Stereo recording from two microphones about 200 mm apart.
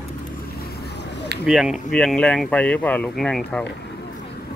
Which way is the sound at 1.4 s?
5° right (ahead or behind).